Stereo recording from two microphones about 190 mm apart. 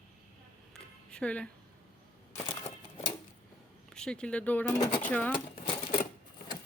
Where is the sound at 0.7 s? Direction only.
5° left (ahead or behind).